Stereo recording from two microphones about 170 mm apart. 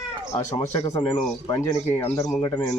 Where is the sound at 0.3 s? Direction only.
15° left (ahead or behind).